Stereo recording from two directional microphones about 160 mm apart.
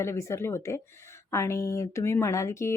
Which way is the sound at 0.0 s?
15° left (ahead or behind).